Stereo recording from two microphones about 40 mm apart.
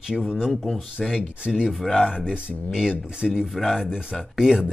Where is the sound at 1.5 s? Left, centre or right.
Centre.